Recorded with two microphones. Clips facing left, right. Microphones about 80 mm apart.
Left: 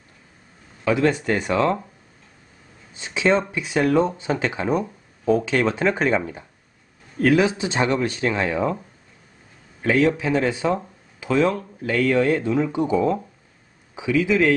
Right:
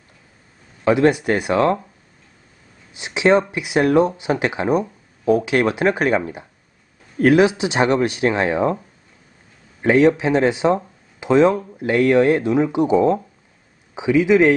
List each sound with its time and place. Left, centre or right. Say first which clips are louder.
0.8 s speech: right 4 dB; centre
2.9 s speech: right 4 dB; centre
9.8 s speech: right 5 dB; right